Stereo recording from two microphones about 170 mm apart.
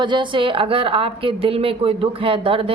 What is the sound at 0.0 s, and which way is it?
A woman's voice, 30° right (ahead or behind).